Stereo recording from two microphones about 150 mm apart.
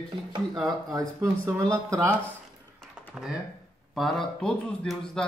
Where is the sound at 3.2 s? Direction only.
10° right (ahead or behind).